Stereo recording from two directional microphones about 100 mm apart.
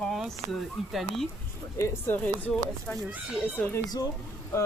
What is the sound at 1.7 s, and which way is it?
Speech, 20° left (ahead or behind).